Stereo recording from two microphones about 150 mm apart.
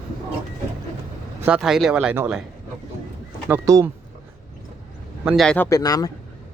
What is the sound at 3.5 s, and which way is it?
Speech, 20° right (ahead or behind).